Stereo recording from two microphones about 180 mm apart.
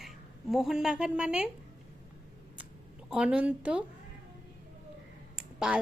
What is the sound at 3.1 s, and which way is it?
Speech, 5° right (ahead or behind).